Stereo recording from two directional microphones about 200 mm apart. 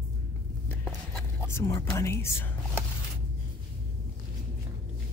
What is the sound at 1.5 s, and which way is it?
Speech, 15° left (ahead or behind).